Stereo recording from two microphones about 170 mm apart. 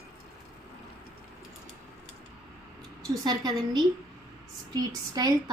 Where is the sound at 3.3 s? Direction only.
25° right (ahead or behind).